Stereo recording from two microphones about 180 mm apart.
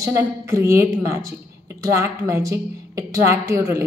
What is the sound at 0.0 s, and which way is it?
A woman's voice, 15° right (ahead or behind).